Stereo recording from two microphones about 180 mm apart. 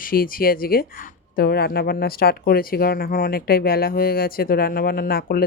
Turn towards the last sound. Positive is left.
turn(degrees=55)  # may be behind; listen again after turning